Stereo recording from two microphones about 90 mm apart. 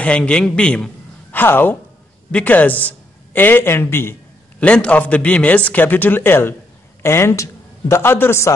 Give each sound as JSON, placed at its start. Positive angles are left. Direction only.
{"t": 0.0, "sound": "a man's voice", "side_deg": 10}
{"t": 1.3, "sound": "a man's voice", "side_deg": 20}
{"t": 4.6, "sound": "a man's voice", "side_deg": 15}